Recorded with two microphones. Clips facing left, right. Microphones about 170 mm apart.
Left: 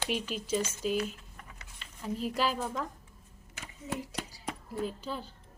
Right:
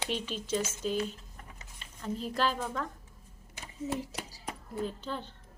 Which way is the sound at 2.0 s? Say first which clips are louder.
Even; 10° left (ahead or behind).